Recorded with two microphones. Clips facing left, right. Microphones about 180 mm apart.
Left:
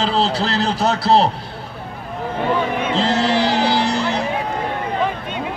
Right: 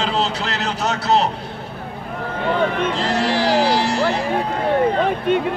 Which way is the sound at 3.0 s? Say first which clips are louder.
Left 6 dB; 25° left (ahead or behind).